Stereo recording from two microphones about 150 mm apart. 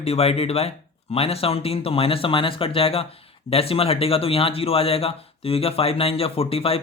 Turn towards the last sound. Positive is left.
turn(degrees=40)  # may be behind; listen again after turning